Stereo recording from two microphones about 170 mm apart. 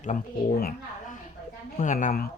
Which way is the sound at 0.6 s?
60° left (ahead or behind).